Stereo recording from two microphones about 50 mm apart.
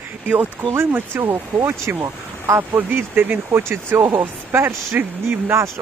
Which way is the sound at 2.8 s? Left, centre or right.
Right.